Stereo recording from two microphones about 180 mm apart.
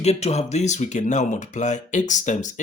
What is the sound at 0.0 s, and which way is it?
Speech, 35° left (ahead or behind).